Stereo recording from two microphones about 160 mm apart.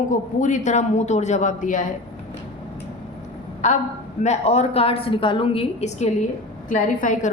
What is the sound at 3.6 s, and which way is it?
A woman's voice, 45° left (ahead or behind).